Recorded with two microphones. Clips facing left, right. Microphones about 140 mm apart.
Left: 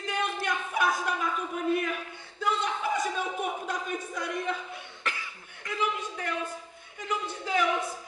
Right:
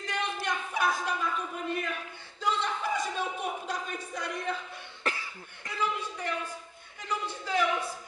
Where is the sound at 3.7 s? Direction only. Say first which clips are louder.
Left 2 dB; centre (ahead or behind).